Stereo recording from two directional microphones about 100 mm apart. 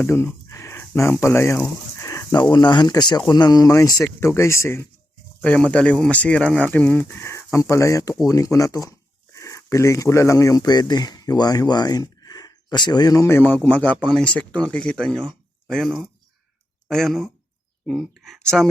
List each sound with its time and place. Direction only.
0.0 s chicken: 25° left (ahead or behind)
0.8 s speech: 25° left (ahead or behind)
2.0 s a sound: 30° left (ahead or behind)
2.3 s speech: 45° left (ahead or behind); by 4.9 s 25° left (ahead or behind)
5.4 s speech: 10° left (ahead or behind); by 13.2 s 40° left (ahead or behind)
13.2 s a man's voice: 20° left (ahead or behind); by 18.7 s centre (ahead or behind)